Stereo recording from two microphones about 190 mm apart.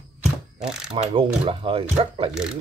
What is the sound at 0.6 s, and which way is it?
Mechanisms, 5° right (ahead or behind).